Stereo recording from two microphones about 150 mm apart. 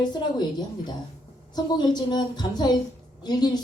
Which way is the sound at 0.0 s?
30° left (ahead or behind).